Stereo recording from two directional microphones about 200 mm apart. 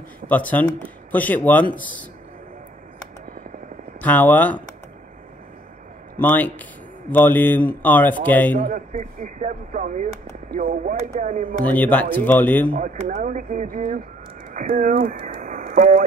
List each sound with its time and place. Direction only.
0.2 s speech: 40° right (ahead or behind)
1.1 s a man's voice: 10° left (ahead or behind)
4.0 s a man's voice: 10° left (ahead or behind)
6.1 s a man's voice: 10° left (ahead or behind)
8.6 s speech: 40° right (ahead or behind)
11.6 s a man's voice: 10° left (ahead or behind)
12.7 s speech: 40° right (ahead or behind)